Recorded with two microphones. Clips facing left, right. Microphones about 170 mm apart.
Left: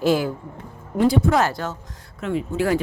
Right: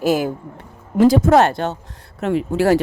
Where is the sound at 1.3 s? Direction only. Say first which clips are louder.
Right 7 dB; 65° right (ahead or behind).